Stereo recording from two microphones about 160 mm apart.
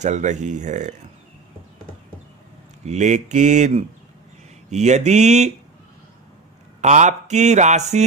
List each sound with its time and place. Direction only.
0.0 s speech: 50° right (ahead or behind)
2.8 s speech: 45° right (ahead or behind)
6.8 s speech: 50° right (ahead or behind)